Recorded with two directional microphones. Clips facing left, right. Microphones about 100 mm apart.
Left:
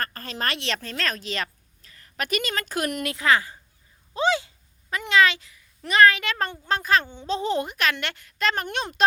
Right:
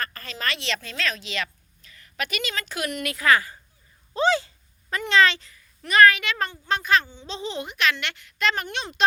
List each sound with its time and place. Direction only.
0.0 s a woman's voice: 45° left (ahead or behind)
3.1 s a woman's voice: 20° left (ahead or behind)
4.1 s a sound: 15° left (ahead or behind)
5.9 s a woman's voice: 25° left (ahead or behind)
6.2 s speech: 35° left (ahead or behind)
7.0 s speech: 50° left (ahead or behind)